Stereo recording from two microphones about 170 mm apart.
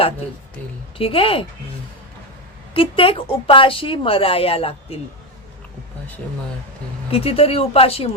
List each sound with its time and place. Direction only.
0.9 s speech: 35° left (ahead or behind)
2.7 s speech: 30° left (ahead or behind)
7.1 s speech: 35° left (ahead or behind)